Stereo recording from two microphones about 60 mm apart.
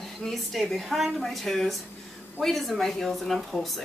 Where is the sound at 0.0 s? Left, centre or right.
Centre.